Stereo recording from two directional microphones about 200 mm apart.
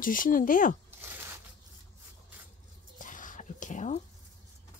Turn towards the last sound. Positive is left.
turn(degrees=35)  # may be behind; listen again after turning